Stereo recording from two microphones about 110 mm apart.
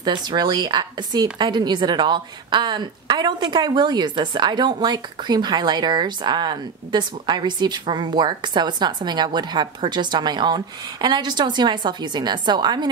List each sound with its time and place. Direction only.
0.0 s a woman's voice: 40° right (ahead or behind)